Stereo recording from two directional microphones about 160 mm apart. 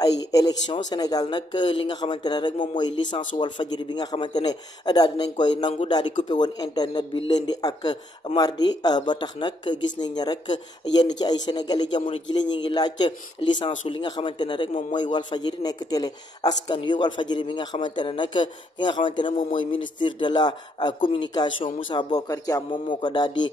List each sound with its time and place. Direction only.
0.3 s a man's voice: 25° left (ahead or behind)